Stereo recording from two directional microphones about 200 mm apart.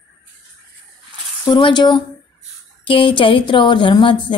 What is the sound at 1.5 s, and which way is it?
A woman's voice, 20° left (ahead or behind).